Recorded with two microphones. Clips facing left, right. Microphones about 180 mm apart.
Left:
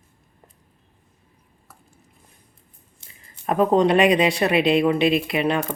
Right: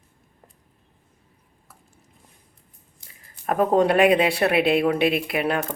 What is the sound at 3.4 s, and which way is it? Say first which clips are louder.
Speech: left 1 dB; 5° right (ahead or behind).